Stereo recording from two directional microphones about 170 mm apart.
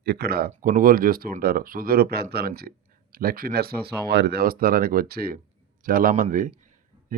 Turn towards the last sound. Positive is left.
turn(degrees=-55)  # may be behind; listen again after turning